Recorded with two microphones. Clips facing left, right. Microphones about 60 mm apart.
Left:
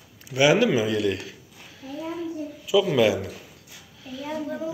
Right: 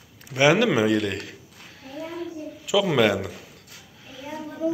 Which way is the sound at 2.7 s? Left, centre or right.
Right.